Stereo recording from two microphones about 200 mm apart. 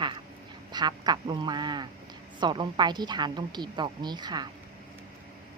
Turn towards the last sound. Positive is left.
turn(degrees=-20)  # may be behind; listen again after turning